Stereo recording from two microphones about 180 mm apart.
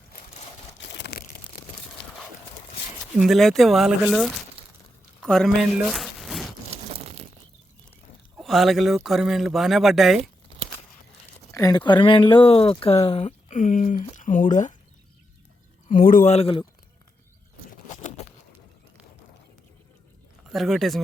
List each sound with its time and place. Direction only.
0.8 s crumpling: 70° left (ahead or behind)
3.0 s speech: centre (ahead or behind)
5.2 s a sound: centre (ahead or behind)
8.4 s speech: centre (ahead or behind)
11.5 s speech: 20° left (ahead or behind); by 14.8 s 45° left (ahead or behind)
15.9 s speech: 50° left (ahead or behind); by 16.6 s 30° left (ahead or behind)
17.8 s a sound: 40° left (ahead or behind)
20.5 s speech: centre (ahead or behind)